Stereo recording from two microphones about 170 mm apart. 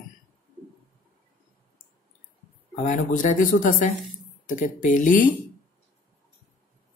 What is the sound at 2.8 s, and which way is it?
Speech, 50° left (ahead or behind).